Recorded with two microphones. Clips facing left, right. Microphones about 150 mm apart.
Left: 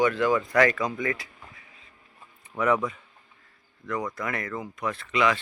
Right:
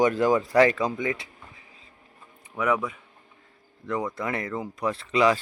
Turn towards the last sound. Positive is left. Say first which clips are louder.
# right 3 dB
turn(degrees=-35)  # may be behind; listen again after turning